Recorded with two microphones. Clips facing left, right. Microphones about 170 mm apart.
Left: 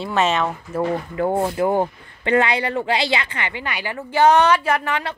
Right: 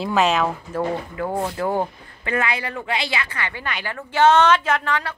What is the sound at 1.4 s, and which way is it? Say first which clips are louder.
Speech: left 2 dB; 15° left (ahead or behind).